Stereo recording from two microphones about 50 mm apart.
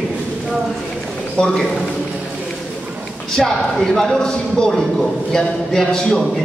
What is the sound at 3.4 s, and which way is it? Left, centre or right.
A man's voice, centre.